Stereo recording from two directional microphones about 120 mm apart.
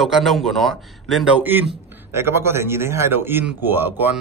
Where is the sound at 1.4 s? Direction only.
15° right (ahead or behind).